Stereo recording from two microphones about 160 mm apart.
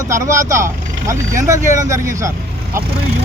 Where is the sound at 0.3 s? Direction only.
20° right (ahead or behind).